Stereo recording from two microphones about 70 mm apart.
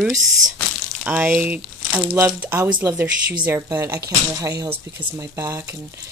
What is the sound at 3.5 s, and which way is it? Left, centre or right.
Speech, right.